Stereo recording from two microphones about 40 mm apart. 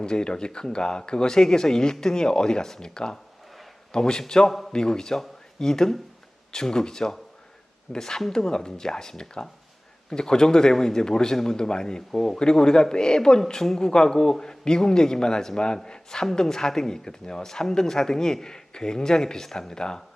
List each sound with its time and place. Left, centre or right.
0.0 s a man's voice: left